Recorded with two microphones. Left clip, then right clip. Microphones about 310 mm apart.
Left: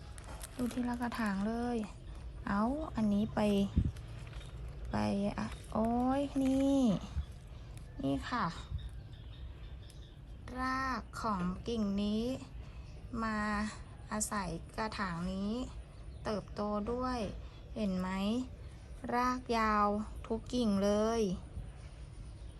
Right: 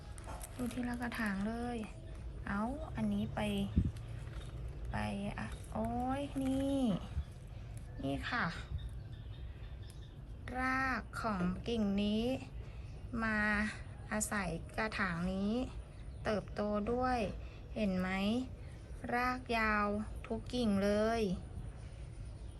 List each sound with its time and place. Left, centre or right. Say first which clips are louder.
0.4 s a woman's voice: left 4 dB; centre
4.9 s a woman's voice: left 5 dB; centre
6.2 s speech: left 5 dB; left
6.7 s a woman's voice: left 4 dB; centre
8.0 s a woman's voice: left 2 dB; centre
10.4 s a woman's voice: right 1 dB; centre